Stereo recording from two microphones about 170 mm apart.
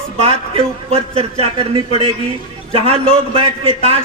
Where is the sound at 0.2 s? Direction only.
35° right (ahead or behind).